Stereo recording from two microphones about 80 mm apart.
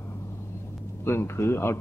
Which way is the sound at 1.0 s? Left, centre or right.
Left.